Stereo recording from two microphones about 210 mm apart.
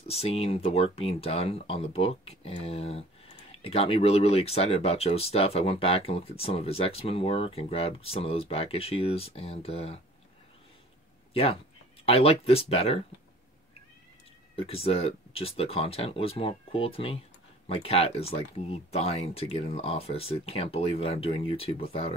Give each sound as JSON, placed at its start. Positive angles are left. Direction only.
{"t": 0.1, "sound": "speech", "side_deg": 30}
{"t": 12.1, "sound": "speech", "side_deg": 30}
{"t": 14.5, "sound": "speech", "side_deg": 25}